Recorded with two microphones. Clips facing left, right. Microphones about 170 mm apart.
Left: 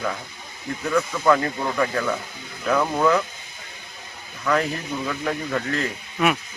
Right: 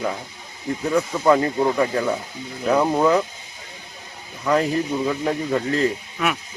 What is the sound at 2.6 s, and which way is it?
Speech, 30° right (ahead or behind).